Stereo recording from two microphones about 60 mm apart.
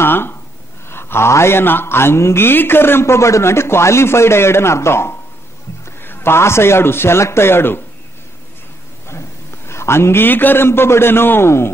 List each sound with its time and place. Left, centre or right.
0.0 s gasp: left
0.8 s a man's voice: left
9.7 s a man's voice: left